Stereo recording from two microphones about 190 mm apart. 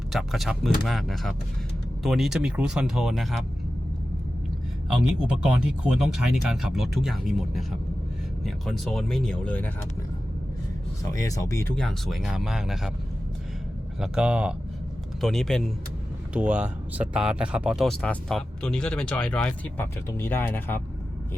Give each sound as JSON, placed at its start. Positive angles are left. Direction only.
{"t": 0.1, "sound": "speech", "side_deg": 0}
{"t": 4.9, "sound": "speech", "side_deg": -5}
{"t": 11.2, "sound": "speech", "side_deg": 15}
{"t": 11.7, "sound": "speech", "side_deg": 0}
{"t": 14.0, "sound": "speech", "side_deg": -5}